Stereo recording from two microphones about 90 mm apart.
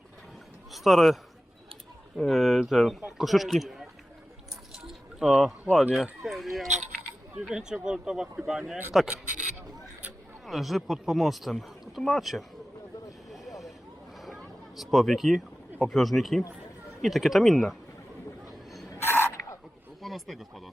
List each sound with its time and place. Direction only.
0.7 s speech: centre (ahead or behind)
4.8 s keys jangling: 5° right (ahead or behind)
5.9 s speech: centre (ahead or behind)
10.4 s speech: centre (ahead or behind)
13.3 s vehicle: centre (ahead or behind)
14.2 s a sound: centre (ahead or behind)
17.0 s speech: centre (ahead or behind)
18.9 s a sound: 25° left (ahead or behind)
20.0 s a sound: centre (ahead or behind)